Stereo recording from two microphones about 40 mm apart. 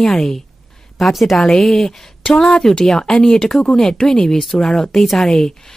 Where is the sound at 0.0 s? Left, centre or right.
Centre.